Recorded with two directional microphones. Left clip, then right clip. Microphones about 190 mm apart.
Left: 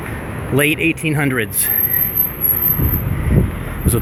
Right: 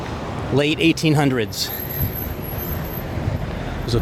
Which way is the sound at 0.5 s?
Centre (ahead or behind).